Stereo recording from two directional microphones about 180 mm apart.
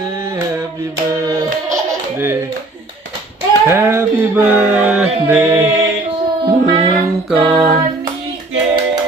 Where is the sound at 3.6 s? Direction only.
15° right (ahead or behind).